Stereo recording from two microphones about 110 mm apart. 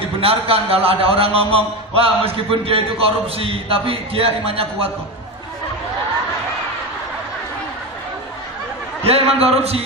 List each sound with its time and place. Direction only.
0.2 s a man's voice: 60° right (ahead or behind)
9.0 s a man's voice: 65° right (ahead or behind)